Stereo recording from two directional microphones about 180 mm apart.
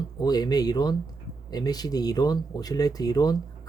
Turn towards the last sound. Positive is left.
turn(degrees=20)  # may be behind; listen again after turning